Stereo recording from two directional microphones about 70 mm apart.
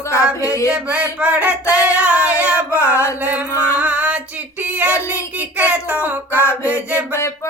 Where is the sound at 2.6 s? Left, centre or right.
Left.